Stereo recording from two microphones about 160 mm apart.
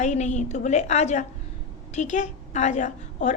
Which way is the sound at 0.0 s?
45° left (ahead or behind).